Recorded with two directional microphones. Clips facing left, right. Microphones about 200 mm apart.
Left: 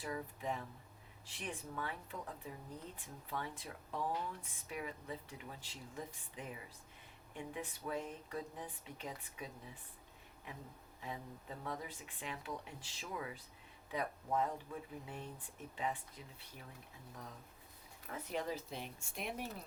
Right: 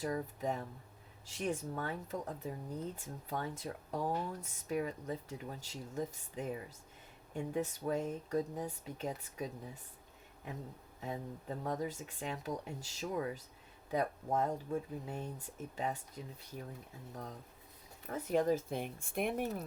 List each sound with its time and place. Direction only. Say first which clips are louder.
0.0 s speech: right 6 dB; 40° right (ahead or behind)
11.0 s speech: right 6 dB; 40° right (ahead or behind)
18.1 s speech: right 9 dB; 45° right (ahead or behind)